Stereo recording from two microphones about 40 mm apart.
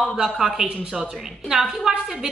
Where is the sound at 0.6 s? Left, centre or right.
Right.